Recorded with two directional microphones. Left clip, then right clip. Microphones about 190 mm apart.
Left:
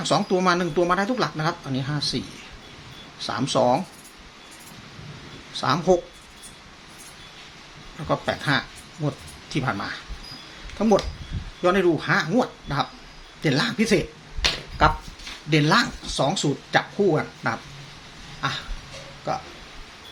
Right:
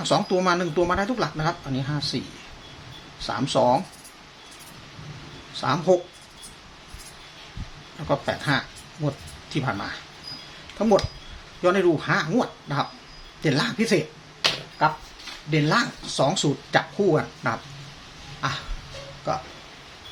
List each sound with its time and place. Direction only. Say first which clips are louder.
0.0 s speech: left 1 dB; centre (ahead or behind)
3.2 s speech: even; 5° left (ahead or behind)
5.5 s speech: left 1 dB; centre (ahead or behind)
8.0 s speech: even; centre (ahead or behind)
15.4 s speech: left 3 dB; 20° left (ahead or behind)
15.7 s speech: left 2 dB; centre (ahead or behind)